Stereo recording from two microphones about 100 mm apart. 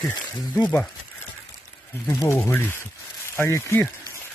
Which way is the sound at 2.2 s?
20° left (ahead or behind).